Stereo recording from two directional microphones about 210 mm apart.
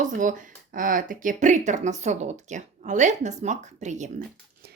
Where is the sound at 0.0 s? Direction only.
40° right (ahead or behind).